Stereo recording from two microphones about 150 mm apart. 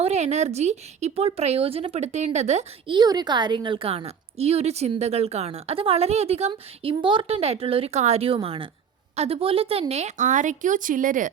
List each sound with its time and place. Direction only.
0.0 s speech: 45° right (ahead or behind)
2.8 s a woman's voice: 30° right (ahead or behind)
6.5 s a woman's voice: 35° right (ahead or behind)
9.9 s speech: 50° right (ahead or behind)